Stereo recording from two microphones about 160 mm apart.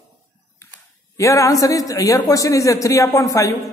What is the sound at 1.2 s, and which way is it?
A woman's voice, 20° left (ahead or behind).